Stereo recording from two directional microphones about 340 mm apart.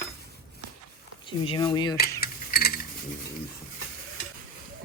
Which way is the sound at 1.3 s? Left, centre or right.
Centre.